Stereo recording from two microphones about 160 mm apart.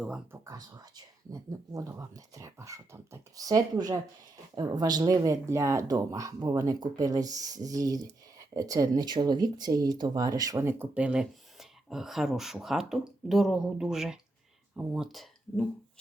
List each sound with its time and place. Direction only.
0.4 s speech: 25° right (ahead or behind); by 15.6 s centre (ahead or behind)